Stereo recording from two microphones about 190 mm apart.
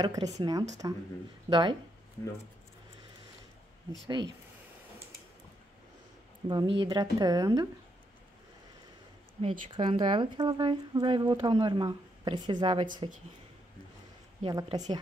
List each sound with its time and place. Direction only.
0.0 s speech: 20° right (ahead or behind)
2.2 s speech: 15° left (ahead or behind)
6.5 s speech: 25° right (ahead or behind)
9.4 s speech: 30° right (ahead or behind)
14.4 s speech: 20° right (ahead or behind)